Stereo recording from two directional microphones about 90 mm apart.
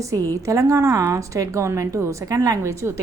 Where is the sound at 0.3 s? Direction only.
35° right (ahead or behind).